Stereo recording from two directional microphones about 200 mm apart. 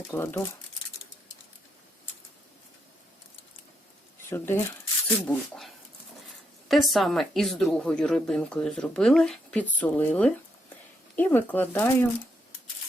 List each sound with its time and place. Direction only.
0.1 s speech: 15° left (ahead or behind)
4.3 s speech: 10° left (ahead or behind)